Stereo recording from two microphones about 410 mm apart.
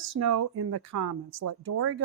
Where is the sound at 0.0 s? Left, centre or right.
Right.